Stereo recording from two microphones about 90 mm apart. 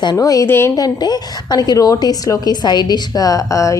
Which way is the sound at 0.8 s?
50° left (ahead or behind).